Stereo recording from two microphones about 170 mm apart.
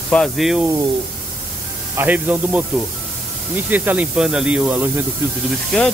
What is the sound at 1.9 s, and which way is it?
Speech, 10° right (ahead or behind).